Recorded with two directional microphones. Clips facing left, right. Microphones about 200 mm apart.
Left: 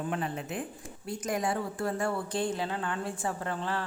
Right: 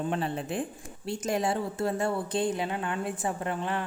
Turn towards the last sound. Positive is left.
turn(degrees=-20)  # may be behind; listen again after turning